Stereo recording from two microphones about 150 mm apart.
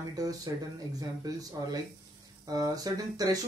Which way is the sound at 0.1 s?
25° right (ahead or behind).